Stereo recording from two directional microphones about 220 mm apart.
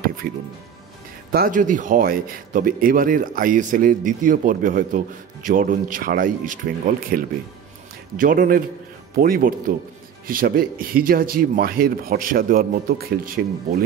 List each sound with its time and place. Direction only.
0.0 s music: 40° right (ahead or behind)
1.3 s speech: 40° right (ahead or behind)